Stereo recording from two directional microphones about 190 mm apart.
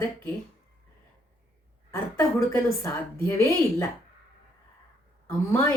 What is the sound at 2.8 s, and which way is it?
A woman's voice, 15° left (ahead or behind).